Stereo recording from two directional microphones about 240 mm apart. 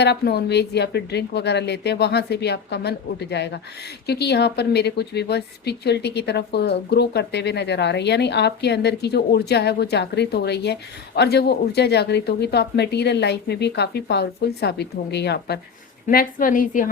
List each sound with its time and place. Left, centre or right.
0.0 s a woman's voice: left